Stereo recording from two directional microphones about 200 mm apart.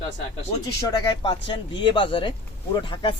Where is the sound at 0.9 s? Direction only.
25° left (ahead or behind).